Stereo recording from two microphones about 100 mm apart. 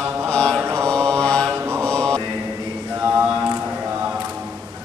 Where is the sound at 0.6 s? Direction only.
25° right (ahead or behind).